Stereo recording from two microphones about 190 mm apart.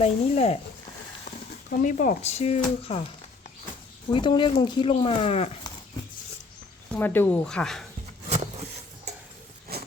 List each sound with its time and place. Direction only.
0.0 s speech: 35° left (ahead or behind)
1.8 s speech: 45° left (ahead or behind)
4.1 s speech: 25° left (ahead or behind)
6.9 s speech: 10° left (ahead or behind)
9.7 s a sound: 55° right (ahead or behind)